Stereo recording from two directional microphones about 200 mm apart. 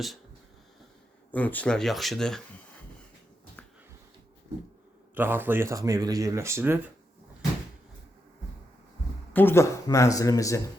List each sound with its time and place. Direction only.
1.3 s speech: 10° left (ahead or behind)
5.1 s speech: 10° right (ahead or behind)
9.3 s speech: 10° left (ahead or behind)